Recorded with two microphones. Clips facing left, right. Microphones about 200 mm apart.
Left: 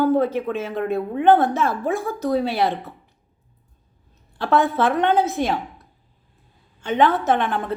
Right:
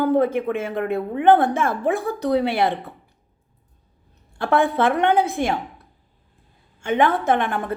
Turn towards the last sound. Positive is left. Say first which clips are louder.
# even
turn(degrees=-50)  # may be behind; listen again after turning